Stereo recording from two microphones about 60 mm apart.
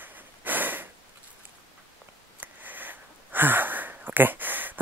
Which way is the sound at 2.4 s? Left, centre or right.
Right.